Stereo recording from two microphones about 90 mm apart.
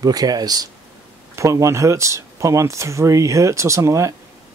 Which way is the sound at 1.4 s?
35° right (ahead or behind).